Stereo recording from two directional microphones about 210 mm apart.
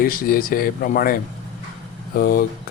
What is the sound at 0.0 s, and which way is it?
A man's voice, 45° left (ahead or behind).